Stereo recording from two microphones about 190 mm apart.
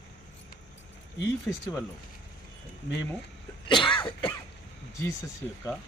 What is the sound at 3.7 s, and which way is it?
Cough, 25° left (ahead or behind).